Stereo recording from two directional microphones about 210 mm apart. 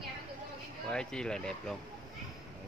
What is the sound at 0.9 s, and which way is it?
Speech, 5° left (ahead or behind).